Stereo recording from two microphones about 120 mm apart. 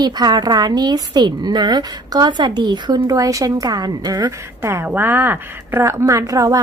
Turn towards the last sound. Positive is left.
turn(degrees=-30)  # may be behind; listen again after turning